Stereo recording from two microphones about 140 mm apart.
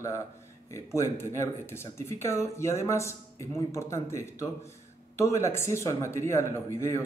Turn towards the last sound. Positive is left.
turn(degrees=20)  # may be behind; listen again after turning